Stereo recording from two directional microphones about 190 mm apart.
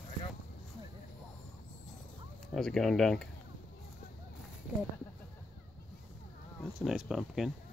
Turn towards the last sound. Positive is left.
turn(degrees=0)  # may be behind; listen again after turning